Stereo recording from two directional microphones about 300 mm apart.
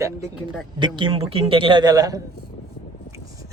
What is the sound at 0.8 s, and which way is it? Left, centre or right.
A man's voice, centre.